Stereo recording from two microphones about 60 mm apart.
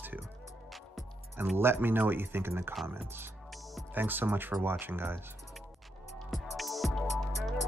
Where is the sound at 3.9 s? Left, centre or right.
Right.